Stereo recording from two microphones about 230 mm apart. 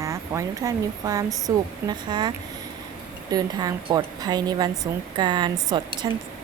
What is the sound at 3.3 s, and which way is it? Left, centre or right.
A woman's voice, centre.